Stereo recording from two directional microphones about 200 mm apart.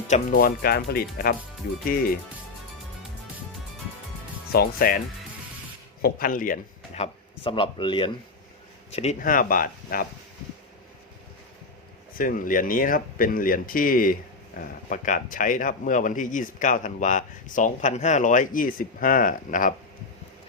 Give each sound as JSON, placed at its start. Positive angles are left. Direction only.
{"t": 0.1, "sound": "speech", "side_deg": 45}
{"t": 4.5, "sound": "speech", "side_deg": 50}
{"t": 12.1, "sound": "speech", "side_deg": 45}